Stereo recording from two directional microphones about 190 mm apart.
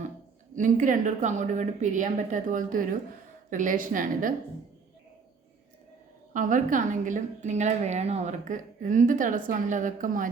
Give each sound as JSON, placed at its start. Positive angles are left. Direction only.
{"t": 0.5, "sound": "a woman's voice", "side_deg": -45}
{"t": 6.3, "sound": "a woman's voice", "side_deg": -45}